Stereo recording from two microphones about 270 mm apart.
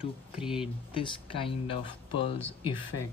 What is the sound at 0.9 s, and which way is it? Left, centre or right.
Speech, centre.